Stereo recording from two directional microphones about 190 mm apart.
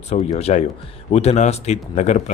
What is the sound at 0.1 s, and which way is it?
A man's voice, 35° left (ahead or behind).